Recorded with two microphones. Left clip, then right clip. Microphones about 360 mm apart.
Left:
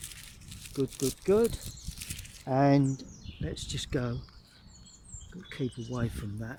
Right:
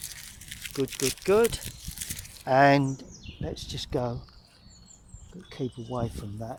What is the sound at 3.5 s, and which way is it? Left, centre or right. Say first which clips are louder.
Speech: right 3 dB; centre.